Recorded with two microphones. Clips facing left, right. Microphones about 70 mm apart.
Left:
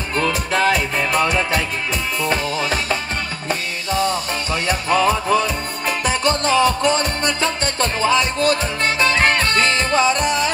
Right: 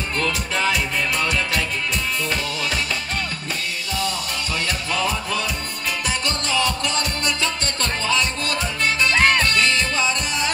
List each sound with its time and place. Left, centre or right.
0.3 s music: left
2.2 s music: left